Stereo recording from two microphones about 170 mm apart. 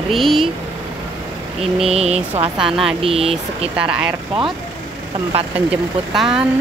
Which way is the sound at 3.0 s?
35° right (ahead or behind).